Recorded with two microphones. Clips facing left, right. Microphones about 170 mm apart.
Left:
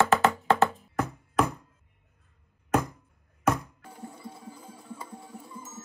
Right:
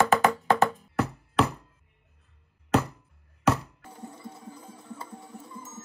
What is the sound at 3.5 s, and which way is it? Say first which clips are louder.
Music: right 1 dB; 30° right (ahead or behind).